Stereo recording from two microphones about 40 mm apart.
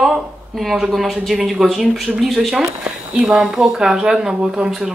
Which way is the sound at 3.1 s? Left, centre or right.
Right.